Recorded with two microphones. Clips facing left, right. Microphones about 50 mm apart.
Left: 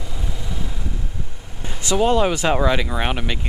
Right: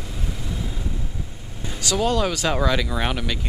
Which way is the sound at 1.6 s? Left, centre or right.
Left.